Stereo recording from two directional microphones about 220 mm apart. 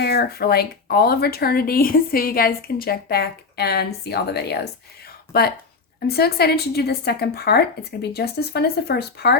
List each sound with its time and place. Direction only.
0.0 s speech: 45° left (ahead or behind)